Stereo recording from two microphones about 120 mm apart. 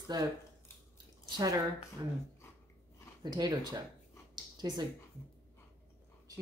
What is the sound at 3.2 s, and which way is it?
Speech, 35° right (ahead or behind).